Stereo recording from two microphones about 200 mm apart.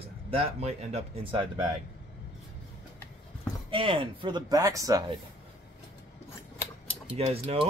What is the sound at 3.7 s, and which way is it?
Speech, 25° right (ahead or behind).